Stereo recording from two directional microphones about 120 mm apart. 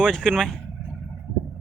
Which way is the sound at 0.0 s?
5° left (ahead or behind).